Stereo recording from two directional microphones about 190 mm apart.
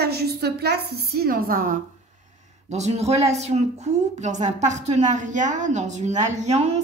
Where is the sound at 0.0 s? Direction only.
55° right (ahead or behind).